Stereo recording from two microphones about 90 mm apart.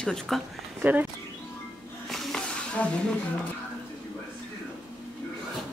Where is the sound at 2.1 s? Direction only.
5° left (ahead or behind).